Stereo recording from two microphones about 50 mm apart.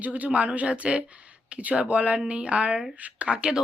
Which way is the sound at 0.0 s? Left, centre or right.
Right.